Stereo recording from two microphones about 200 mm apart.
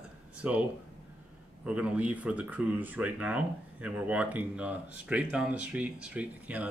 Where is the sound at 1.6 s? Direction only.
5° right (ahead or behind).